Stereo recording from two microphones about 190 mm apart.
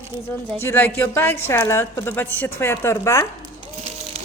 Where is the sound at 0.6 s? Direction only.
10° left (ahead or behind).